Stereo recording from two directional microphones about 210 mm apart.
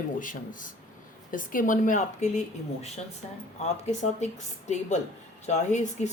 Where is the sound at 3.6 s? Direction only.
35° left (ahead or behind).